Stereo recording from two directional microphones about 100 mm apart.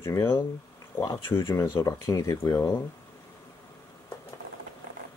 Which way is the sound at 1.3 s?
25° left (ahead or behind).